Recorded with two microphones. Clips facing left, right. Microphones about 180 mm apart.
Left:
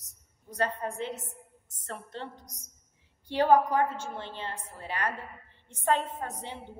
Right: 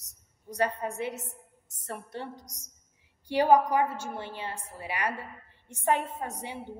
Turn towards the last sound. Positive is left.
turn(degrees=-10)  # may be behind; listen again after turning